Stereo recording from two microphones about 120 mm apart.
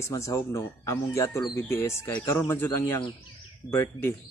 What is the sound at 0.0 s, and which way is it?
Speech, 25° left (ahead or behind).